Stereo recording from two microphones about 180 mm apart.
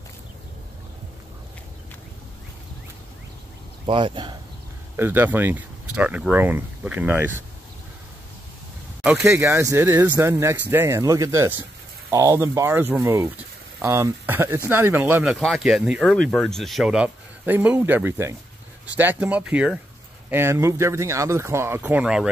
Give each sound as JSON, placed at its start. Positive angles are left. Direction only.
{"t": 3.8, "sound": "speech", "side_deg": -25}
{"t": 4.9, "sound": "speech", "side_deg": -10}
{"t": 9.0, "sound": "speech", "side_deg": -10}
{"t": 15.3, "sound": "speech", "side_deg": 0}